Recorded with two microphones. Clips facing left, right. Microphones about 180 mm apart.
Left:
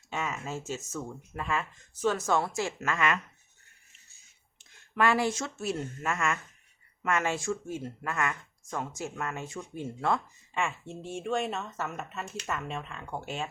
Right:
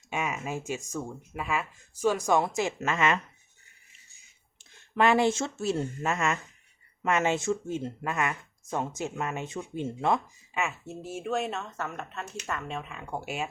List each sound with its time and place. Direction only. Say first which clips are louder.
0.1 s speech: right 3 dB; 15° right (ahead or behind)
4.9 s speech: right 4 dB; 20° right (ahead or behind)
10.5 s speech: even; 5° right (ahead or behind)